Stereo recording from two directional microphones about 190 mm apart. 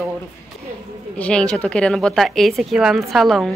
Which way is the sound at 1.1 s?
5° left (ahead or behind).